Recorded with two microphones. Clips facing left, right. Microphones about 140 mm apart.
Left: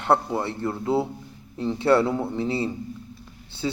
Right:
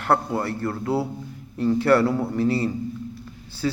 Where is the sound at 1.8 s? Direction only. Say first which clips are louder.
Left 1 dB; 25° left (ahead or behind).